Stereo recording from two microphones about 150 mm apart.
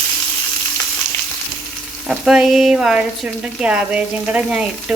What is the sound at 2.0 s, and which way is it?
Speech, centre (ahead or behind).